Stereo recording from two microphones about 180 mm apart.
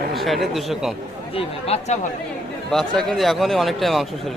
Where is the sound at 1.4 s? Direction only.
35° left (ahead or behind).